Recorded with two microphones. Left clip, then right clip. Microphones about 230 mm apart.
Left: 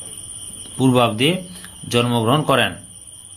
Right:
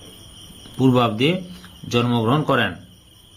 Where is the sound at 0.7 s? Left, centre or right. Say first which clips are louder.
Left 2 dB; centre.